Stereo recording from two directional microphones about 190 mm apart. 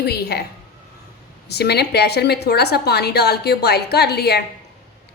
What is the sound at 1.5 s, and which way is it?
A woman's voice, 60° left (ahead or behind).